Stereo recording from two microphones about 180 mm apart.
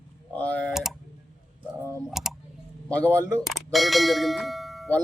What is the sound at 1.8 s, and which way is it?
Typing, 15° right (ahead or behind).